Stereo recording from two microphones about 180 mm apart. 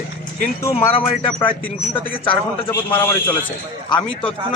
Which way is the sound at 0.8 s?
30° left (ahead or behind).